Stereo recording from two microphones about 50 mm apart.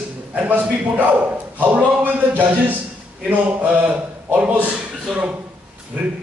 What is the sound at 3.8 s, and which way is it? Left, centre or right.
Speech, right.